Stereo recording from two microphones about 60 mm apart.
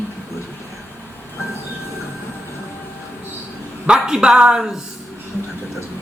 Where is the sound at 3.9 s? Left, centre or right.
Centre.